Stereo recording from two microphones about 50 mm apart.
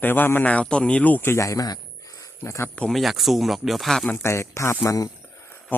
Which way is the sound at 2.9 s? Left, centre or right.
Centre.